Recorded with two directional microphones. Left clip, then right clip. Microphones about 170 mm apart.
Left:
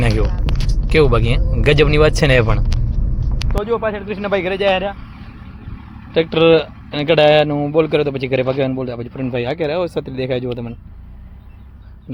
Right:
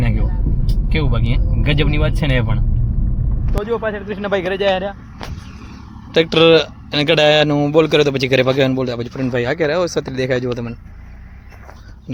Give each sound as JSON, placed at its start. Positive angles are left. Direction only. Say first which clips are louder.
{"t": 0.9, "sound": "speech", "louder": "left 9 dB", "side_deg": 30}
{"t": 3.5, "sound": "speech", "louder": "left 1 dB", "side_deg": 0}
{"t": 6.1, "sound": "speech", "louder": "right 1 dB", "side_deg": -15}